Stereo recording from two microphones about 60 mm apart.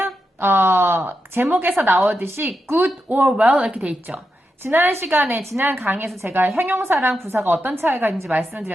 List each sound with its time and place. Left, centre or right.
0.0 s a woman's voice: right
4.6 s a woman's voice: right